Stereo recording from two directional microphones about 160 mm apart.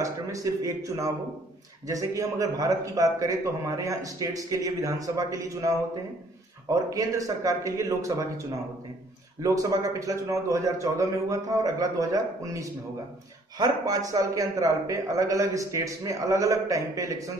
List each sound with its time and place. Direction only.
0.0 s a man's voice: 20° right (ahead or behind)